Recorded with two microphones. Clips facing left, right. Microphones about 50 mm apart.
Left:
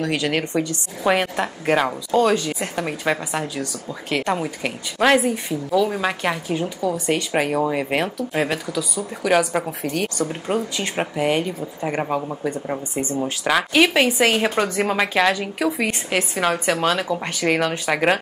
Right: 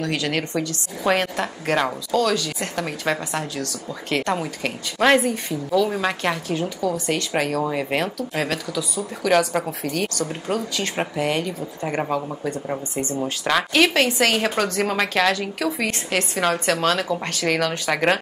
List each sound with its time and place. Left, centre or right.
0.0 s a woman's voice: centre
2.0 s speech: left
2.6 s a woman's voice: centre
6.8 s a woman's voice: left
13.2 s a woman's voice: centre